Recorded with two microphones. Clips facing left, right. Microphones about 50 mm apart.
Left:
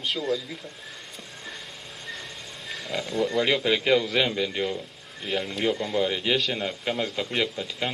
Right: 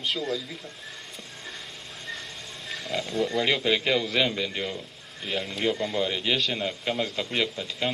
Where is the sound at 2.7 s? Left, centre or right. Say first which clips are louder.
Even; centre.